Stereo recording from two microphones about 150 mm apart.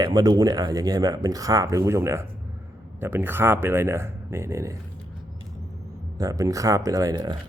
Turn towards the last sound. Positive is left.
turn(degrees=-25)  # may be behind; listen again after turning